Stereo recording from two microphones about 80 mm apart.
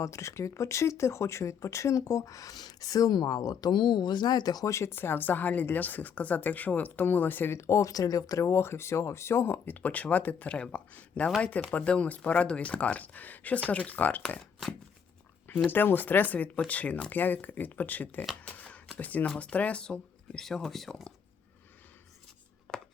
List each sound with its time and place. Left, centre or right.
0.0 s speech: left
4.6 s speech: left
8.4 s speech: left
15.4 s speech: left
18.4 s a sound: centre
18.9 s speech: centre
22.7 s a sound: centre